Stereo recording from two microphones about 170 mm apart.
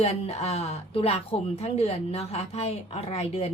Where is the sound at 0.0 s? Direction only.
40° left (ahead or behind).